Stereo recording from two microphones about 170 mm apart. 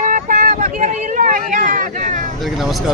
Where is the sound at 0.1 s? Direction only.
55° right (ahead or behind).